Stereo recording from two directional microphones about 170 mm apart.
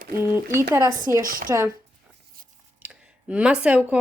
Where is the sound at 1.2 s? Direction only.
55° right (ahead or behind).